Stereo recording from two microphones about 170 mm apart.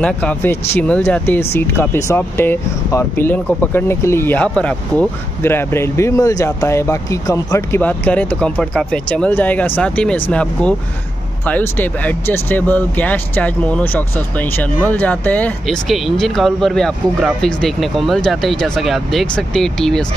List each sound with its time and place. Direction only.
0.0 s speech: 10° left (ahead or behind)